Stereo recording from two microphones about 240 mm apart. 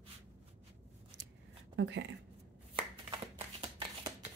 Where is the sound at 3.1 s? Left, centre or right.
Centre.